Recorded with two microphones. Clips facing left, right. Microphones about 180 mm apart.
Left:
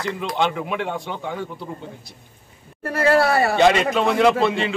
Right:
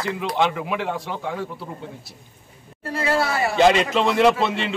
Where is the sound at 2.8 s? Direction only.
60° left (ahead or behind).